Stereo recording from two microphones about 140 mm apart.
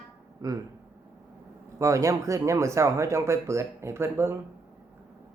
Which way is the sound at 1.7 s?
20° right (ahead or behind).